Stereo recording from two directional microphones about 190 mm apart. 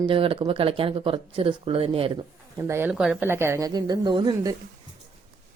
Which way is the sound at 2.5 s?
15° right (ahead or behind).